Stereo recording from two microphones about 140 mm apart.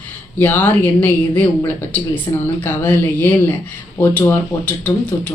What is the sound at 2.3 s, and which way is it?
Speech, 30° left (ahead or behind).